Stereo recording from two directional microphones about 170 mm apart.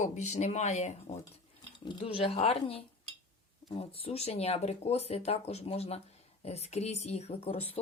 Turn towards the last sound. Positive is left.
turn(degrees=35)  # may be behind; listen again after turning